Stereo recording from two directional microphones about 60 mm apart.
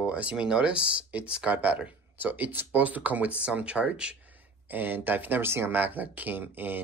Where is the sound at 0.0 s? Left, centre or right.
Right.